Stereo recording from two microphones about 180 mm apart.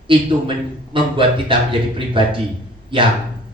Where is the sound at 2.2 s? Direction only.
30° right (ahead or behind).